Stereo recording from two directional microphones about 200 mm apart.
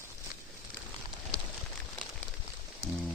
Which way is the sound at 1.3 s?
55° left (ahead or behind).